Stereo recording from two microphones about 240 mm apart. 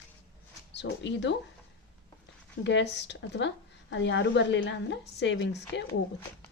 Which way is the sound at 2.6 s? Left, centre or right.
Left.